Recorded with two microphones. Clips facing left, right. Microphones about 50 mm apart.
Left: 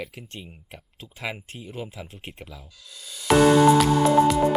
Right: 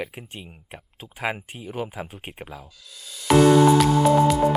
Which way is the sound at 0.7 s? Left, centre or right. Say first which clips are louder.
Right 2 dB; right.